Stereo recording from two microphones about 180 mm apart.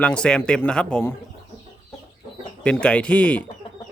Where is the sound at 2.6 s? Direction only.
5° left (ahead or behind).